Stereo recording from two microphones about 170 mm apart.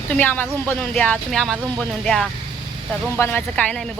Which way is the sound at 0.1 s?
10° left (ahead or behind).